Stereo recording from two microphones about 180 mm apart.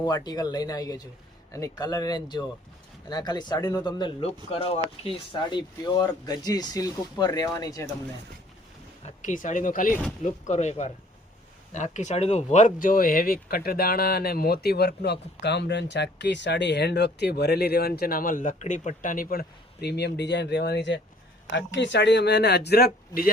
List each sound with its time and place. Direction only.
0.0 s speech: 20° left (ahead or behind)
9.0 s speech: 45° left (ahead or behind); by 21.0 s 75° left (ahead or behind)
21.5 s speech: 85° left; by 23.3 s 55° left (ahead or behind)